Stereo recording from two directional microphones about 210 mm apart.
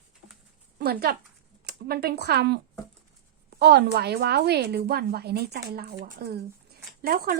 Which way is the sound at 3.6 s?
50° right (ahead or behind).